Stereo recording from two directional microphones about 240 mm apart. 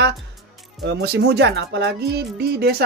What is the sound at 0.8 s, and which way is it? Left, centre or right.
Speech, right.